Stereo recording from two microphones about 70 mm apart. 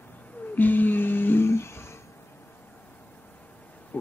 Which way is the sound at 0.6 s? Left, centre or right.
Left.